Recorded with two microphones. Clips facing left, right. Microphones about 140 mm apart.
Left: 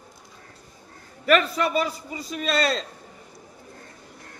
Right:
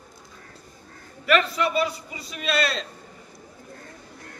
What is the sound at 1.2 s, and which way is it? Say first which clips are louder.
A man's voice: left 1 dB; 40° left (ahead or behind).